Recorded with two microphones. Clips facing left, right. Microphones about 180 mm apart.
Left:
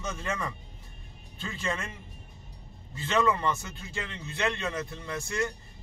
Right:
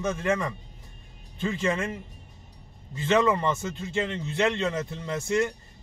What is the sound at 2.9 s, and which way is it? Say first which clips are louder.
A man's voice: right 4 dB; 20° right (ahead or behind).